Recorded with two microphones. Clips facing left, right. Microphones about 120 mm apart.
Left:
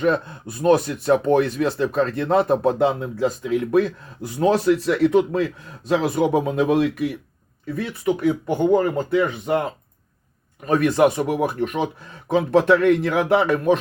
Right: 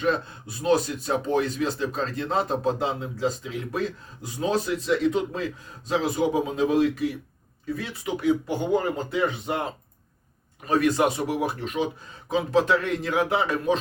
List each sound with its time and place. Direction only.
0.0 s speech: 55° left (ahead or behind)
8.2 s speech: 55° left (ahead or behind)
10.7 s speech: 55° left (ahead or behind)